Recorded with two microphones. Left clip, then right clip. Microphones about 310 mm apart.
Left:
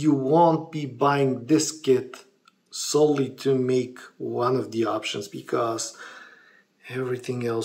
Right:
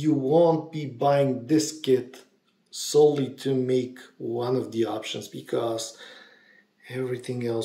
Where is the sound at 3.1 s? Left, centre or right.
Left.